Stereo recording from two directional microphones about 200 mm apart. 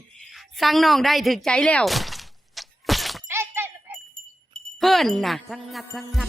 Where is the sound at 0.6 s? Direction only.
Centre (ahead or behind).